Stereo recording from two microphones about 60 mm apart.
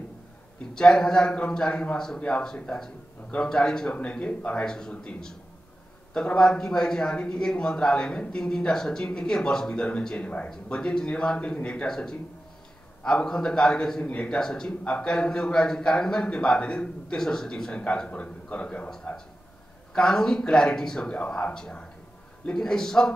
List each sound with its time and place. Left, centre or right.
0.7 s a man's voice: centre
19.9 s a man's voice: centre